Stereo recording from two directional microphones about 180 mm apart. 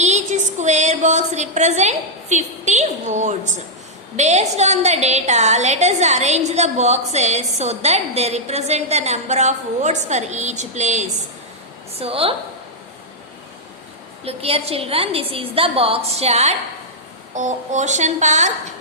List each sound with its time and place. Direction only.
0.0 s a sound: 40° right (ahead or behind)
4.2 s a woman's voice: 40° right (ahead or behind)
14.3 s a woman's voice: 35° right (ahead or behind)